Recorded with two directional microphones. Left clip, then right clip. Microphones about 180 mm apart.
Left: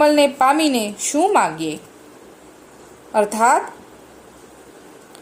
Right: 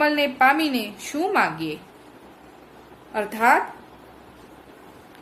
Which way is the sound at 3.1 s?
30° left (ahead or behind).